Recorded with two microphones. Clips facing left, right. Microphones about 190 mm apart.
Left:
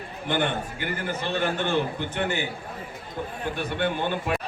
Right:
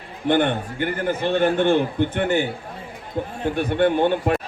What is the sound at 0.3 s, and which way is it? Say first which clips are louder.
A man's voice: right 7 dB; 50° right (ahead or behind).